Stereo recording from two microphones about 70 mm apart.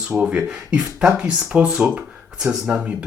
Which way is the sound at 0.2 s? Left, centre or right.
Centre.